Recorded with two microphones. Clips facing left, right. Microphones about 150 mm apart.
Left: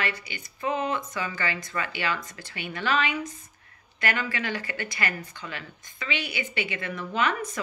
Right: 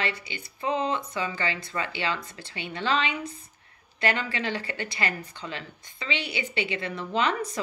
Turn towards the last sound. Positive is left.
turn(degrees=-25)  # may be behind; listen again after turning